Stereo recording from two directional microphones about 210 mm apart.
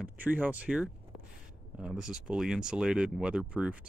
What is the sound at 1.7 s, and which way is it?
Speech, 5° right (ahead or behind).